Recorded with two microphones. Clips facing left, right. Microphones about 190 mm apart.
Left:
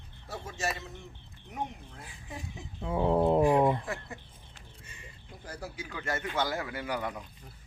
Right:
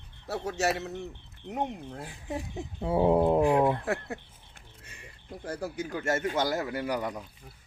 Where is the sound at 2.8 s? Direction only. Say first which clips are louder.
Right 5 dB; 35° right (ahead or behind).